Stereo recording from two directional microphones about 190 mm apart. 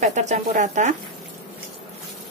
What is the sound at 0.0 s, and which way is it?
Speech, 40° right (ahead or behind).